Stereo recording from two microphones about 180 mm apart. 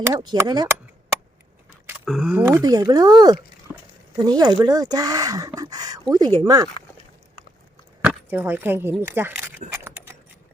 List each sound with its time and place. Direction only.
0.0 s speech: 20° right (ahead or behind)
2.0 s speech: 5° right (ahead or behind); by 3.3 s 20° right (ahead or behind)
3.7 s a sound: 5° right (ahead or behind)
4.2 s speech: 20° right (ahead or behind)
8.0 s speech: 10° right (ahead or behind)